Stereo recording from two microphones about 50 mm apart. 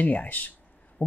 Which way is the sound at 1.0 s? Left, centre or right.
Left.